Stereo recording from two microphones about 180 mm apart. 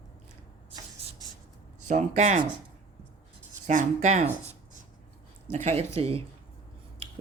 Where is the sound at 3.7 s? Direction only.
40° right (ahead or behind).